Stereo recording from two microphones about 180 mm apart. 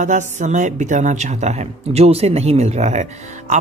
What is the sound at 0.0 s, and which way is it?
A woman's voice, 40° right (ahead or behind).